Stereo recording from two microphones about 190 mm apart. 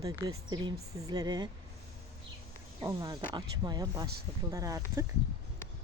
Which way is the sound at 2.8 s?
20° right (ahead or behind).